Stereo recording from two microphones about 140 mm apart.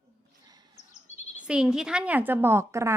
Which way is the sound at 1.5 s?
5° right (ahead or behind).